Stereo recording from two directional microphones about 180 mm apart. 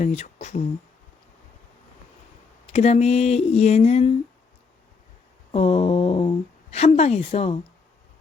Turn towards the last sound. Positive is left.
turn(degrees=35)  # may be behind; listen again after turning